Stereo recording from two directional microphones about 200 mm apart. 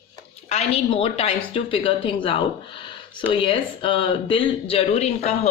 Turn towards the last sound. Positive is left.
turn(degrees=30)  # may be behind; listen again after turning